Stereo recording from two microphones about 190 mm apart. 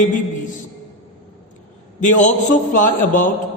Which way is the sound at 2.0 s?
40° left (ahead or behind).